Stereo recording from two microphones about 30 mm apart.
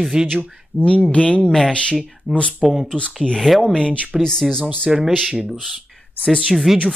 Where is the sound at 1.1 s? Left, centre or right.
Left.